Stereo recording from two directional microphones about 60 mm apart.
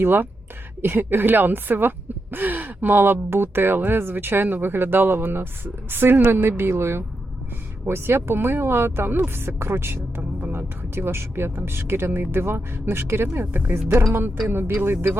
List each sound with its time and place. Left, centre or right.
0.0 s speech: right
10.2 s speech: right
10.8 s speech: right